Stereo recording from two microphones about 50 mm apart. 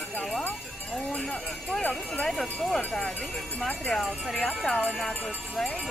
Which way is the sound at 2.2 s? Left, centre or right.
Centre.